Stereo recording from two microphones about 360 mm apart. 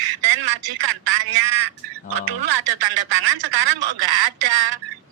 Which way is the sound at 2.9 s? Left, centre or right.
Right.